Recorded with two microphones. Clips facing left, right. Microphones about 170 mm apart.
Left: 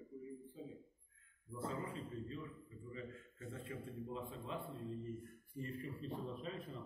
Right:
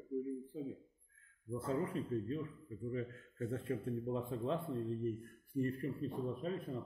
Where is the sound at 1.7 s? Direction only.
60° right (ahead or behind).